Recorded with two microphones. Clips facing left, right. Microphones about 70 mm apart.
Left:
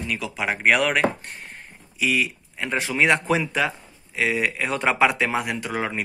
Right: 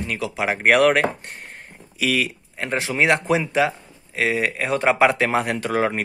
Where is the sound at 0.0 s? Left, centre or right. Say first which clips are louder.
Right 3 dB; right.